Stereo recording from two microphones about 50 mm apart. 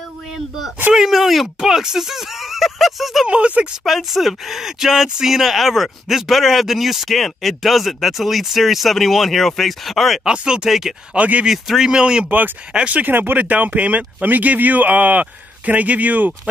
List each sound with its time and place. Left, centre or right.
0.9 s speech: centre
3.3 s speech: right
3.8 s speech: centre
10.2 s speech: centre
11.1 s speech: right
11.4 s speech: centre
12.3 s speech: right
12.7 s speech: right
13.0 s speech: right